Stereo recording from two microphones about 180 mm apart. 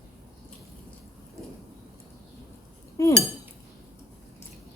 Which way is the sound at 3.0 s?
15° left (ahead or behind).